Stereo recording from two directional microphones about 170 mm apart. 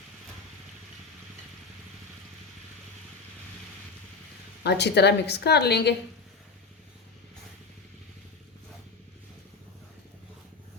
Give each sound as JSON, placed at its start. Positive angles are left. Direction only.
{"t": 4.6, "sound": "a woman's voice", "side_deg": 80}